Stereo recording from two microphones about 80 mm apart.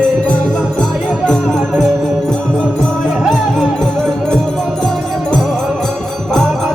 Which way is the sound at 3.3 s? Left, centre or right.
Centre.